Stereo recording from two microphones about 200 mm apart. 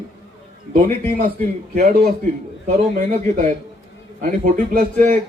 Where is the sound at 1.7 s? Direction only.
45° right (ahead or behind).